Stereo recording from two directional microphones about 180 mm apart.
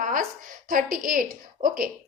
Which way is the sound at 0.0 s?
50° right (ahead or behind).